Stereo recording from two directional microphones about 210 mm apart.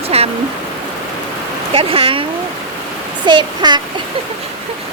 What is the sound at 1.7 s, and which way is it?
Speech, 25° right (ahead or behind).